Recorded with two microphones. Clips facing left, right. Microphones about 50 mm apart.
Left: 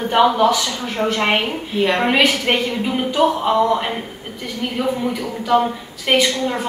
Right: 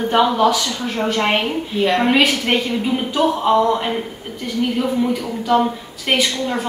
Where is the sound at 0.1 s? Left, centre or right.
Centre.